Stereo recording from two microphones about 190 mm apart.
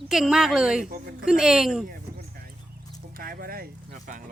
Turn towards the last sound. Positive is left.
turn(degrees=-50)  # may be behind; listen again after turning